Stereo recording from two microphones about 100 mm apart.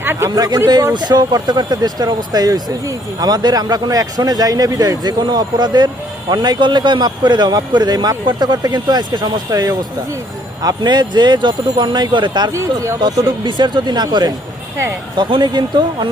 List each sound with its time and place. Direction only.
0.0 s speech: 20° right (ahead or behind)
0.3 s speech: 40° right (ahead or behind)
12.5 s speech: 25° right (ahead or behind)
13.0 s speech: 45° right (ahead or behind)